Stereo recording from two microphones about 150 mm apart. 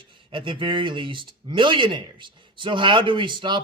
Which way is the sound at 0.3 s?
35° right (ahead or behind).